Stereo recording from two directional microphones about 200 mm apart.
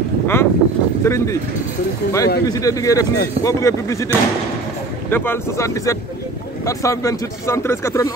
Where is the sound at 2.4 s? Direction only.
15° left (ahead or behind).